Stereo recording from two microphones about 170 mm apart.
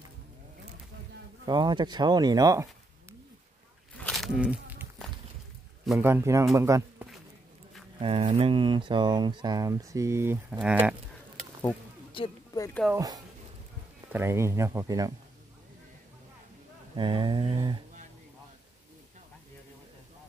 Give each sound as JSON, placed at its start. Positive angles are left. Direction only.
{"t": 1.4, "sound": "speech", "side_deg": -25}
{"t": 4.0, "sound": "a sound", "side_deg": 0}
{"t": 5.0, "sound": "walk", "side_deg": 5}
{"t": 5.9, "sound": "speech", "side_deg": -10}
{"t": 8.0, "sound": "speech", "side_deg": -35}
{"t": 12.1, "sound": "a sound", "side_deg": 30}
{"t": 12.9, "sound": "speech", "side_deg": -20}
{"t": 16.9, "sound": "speech", "side_deg": -30}